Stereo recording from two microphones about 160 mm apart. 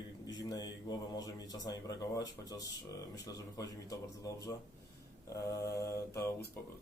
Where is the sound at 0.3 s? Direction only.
25° left (ahead or behind).